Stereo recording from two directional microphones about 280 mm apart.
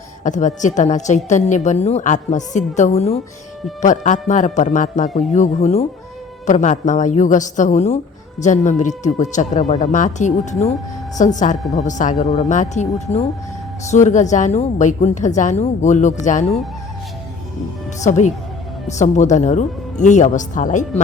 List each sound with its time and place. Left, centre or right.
0.3 s a woman's voice: left
18.0 s a woman's voice: left